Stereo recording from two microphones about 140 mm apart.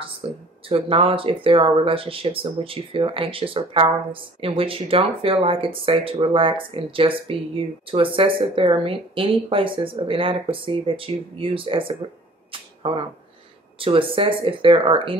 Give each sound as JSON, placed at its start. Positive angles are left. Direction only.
{"t": 0.2, "sound": "a sound", "side_deg": -40}
{"t": 0.7, "sound": "speech", "side_deg": -40}
{"t": 12.4, "sound": "arrow", "side_deg": -40}
{"t": 13.7, "sound": "speech", "side_deg": -40}